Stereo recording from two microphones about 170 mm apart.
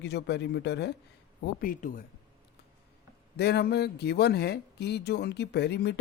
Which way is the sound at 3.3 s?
75° left (ahead or behind).